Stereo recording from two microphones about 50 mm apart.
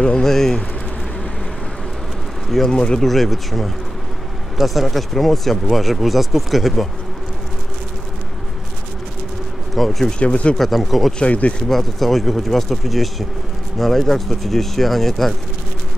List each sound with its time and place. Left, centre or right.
0.0 s speech: centre
2.7 s speech: centre
3.1 s speech: centre
9.8 s speech: centre
10.0 s speech: left
10.6 s speech: centre
11.1 s speech: left
11.6 s speech: centre